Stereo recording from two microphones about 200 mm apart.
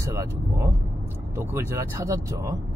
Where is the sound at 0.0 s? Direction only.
15° right (ahead or behind).